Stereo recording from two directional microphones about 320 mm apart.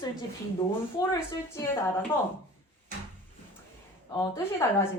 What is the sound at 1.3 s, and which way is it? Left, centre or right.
Speech, centre.